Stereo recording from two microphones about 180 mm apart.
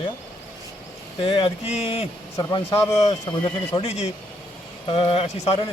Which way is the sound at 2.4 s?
20° left (ahead or behind).